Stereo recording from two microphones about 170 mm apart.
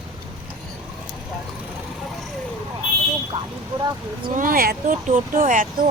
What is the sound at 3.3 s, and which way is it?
Speech, 25° right (ahead or behind).